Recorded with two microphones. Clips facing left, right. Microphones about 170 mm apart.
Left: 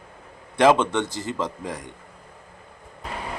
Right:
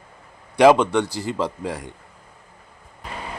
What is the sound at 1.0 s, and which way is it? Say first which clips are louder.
Speech: right 2 dB; 20° left (ahead or behind).